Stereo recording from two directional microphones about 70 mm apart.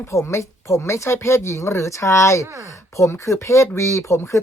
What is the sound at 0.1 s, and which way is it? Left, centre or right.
Speech, left.